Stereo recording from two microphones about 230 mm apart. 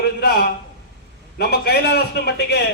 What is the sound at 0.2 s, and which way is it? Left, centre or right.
A man's voice, left.